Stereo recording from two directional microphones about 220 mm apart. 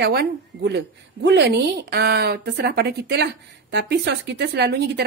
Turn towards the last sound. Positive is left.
turn(degrees=-50)  # may be behind; listen again after turning